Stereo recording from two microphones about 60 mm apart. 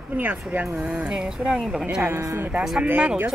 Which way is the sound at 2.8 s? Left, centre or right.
Right.